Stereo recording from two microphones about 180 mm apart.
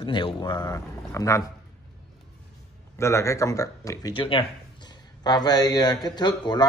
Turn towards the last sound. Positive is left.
turn(degrees=25)  # may be behind; listen again after turning